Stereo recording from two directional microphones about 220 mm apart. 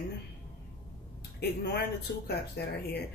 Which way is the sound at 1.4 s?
45° left (ahead or behind).